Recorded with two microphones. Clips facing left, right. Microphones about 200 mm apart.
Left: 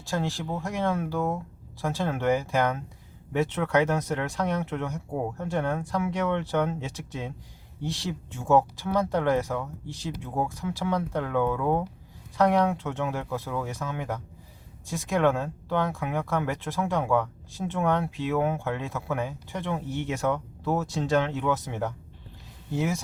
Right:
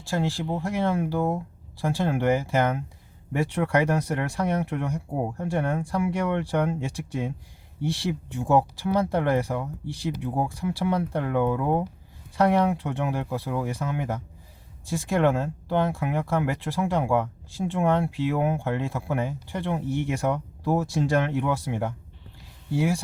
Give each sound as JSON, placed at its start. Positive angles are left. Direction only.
{"t": 0.2, "sound": "speech", "side_deg": -15}
{"t": 3.3, "sound": "speech", "side_deg": -15}